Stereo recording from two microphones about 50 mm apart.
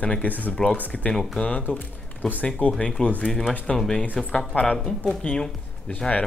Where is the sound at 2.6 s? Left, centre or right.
Centre.